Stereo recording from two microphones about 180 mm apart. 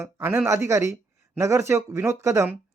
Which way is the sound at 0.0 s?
15° right (ahead or behind).